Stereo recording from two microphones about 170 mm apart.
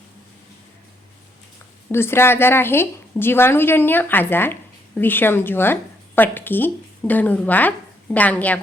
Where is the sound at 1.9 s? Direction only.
15° left (ahead or behind).